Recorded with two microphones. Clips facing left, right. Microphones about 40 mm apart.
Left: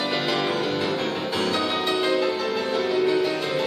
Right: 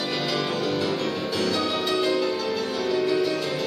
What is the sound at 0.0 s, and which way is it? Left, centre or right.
Music, centre.